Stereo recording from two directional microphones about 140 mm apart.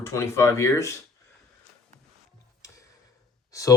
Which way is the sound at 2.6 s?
20° left (ahead or behind).